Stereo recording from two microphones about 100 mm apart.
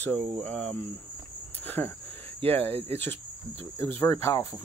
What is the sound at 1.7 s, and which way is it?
Speech, 20° left (ahead or behind).